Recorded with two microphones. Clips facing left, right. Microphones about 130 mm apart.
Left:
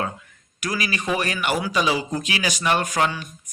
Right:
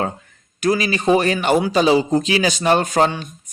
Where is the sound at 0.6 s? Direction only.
30° right (ahead or behind).